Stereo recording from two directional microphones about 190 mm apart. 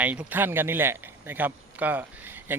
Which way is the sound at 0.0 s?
10° right (ahead or behind).